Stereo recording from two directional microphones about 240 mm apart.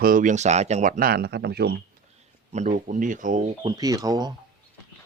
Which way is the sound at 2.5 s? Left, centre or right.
Right.